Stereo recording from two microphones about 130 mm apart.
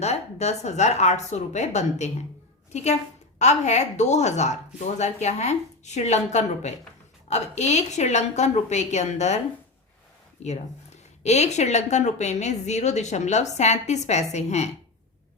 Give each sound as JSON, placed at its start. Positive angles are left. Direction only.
{"t": 0.0, "sound": "a woman's voice", "side_deg": 55}
{"t": 10.4, "sound": "a woman's voice", "side_deg": 60}